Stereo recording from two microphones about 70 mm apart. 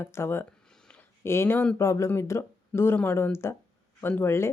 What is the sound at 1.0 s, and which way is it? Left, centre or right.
Speech, left.